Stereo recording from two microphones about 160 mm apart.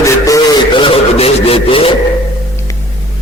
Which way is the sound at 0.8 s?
35° left (ahead or behind).